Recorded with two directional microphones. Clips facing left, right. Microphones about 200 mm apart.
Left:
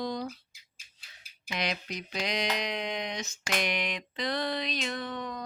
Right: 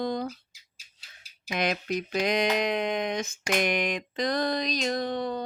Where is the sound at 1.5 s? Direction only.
50° right (ahead or behind).